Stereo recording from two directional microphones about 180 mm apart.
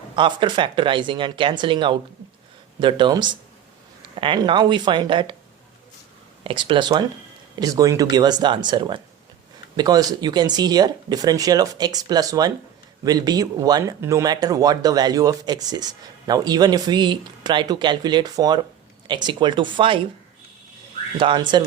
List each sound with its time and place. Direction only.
0.2 s speech: 25° right (ahead or behind)
6.4 s speech: 30° right (ahead or behind)
21.2 s speech: 25° right (ahead or behind)